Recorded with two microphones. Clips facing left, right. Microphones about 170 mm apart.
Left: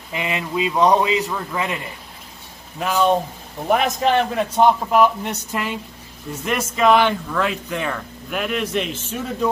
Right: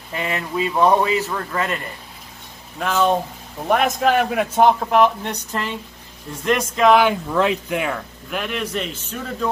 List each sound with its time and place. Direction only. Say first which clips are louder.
0.1 s a man's voice: even; 15° left (ahead or behind)
2.8 s a man's voice: left 1 dB; 5° left (ahead or behind)
7.3 s speech: right 3 dB; 15° right (ahead or behind)
8.3 s a man's voice: left 2 dB; centre (ahead or behind)